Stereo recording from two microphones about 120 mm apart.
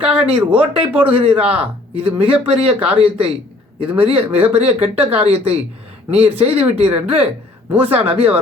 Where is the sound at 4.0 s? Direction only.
50° right (ahead or behind).